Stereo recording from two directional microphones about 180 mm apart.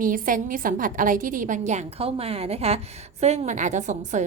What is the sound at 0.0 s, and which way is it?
A woman's voice, 50° right (ahead or behind).